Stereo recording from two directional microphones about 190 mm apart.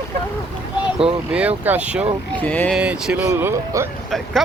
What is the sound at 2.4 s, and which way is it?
Speech, 10° left (ahead or behind).